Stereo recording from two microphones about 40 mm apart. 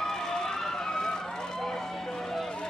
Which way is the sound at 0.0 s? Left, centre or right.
Centre.